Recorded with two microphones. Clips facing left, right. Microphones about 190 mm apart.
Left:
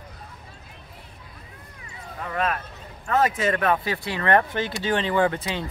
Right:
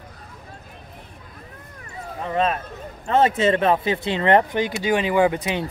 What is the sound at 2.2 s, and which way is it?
Speech, 25° right (ahead or behind).